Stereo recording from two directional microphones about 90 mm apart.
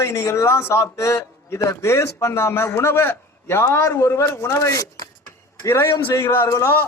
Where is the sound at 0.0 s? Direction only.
30° left (ahead or behind).